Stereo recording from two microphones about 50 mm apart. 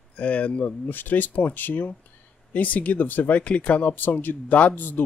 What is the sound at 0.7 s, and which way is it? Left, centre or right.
Speech, left.